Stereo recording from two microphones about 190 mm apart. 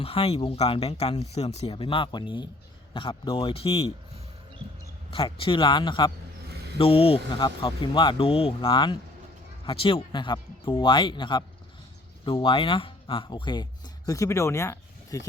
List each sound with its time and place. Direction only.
0.0 s speech: 30° left (ahead or behind)
5.1 s speech: 30° left (ahead or behind)